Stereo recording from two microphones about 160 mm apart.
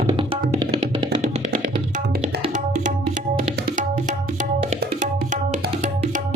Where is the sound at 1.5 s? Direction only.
60° right (ahead or behind).